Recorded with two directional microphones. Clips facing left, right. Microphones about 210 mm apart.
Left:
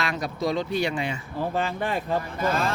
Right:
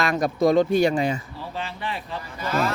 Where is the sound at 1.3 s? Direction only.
50° left (ahead or behind).